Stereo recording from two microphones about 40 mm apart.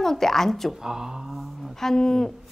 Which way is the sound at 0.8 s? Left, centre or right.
Centre.